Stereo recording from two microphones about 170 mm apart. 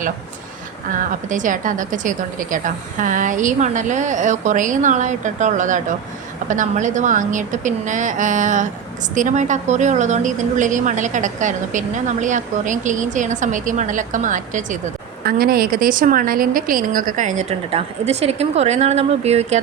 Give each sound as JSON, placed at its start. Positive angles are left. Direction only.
{"t": 0.9, "sound": "a woman's voice", "side_deg": -50}
{"t": 15.2, "sound": "a woman's voice", "side_deg": -60}